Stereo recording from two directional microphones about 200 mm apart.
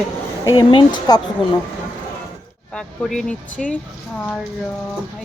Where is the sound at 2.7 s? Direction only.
5° left (ahead or behind).